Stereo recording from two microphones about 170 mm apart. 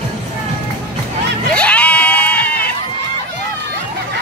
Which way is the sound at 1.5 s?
5° left (ahead or behind).